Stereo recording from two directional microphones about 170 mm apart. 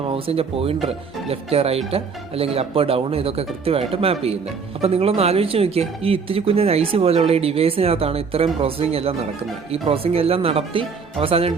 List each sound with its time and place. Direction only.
0.1 s speech: 35° right (ahead or behind)